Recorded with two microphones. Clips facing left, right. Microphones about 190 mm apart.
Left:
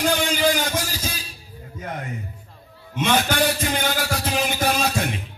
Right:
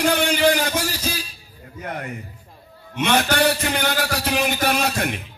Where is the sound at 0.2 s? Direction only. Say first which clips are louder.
Right 3 dB; 60° right (ahead or behind).